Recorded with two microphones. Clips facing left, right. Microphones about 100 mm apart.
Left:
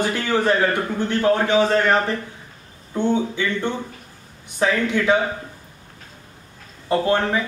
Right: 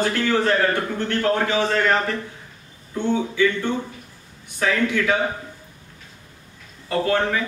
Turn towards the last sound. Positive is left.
turn(degrees=20)  # may be behind; listen again after turning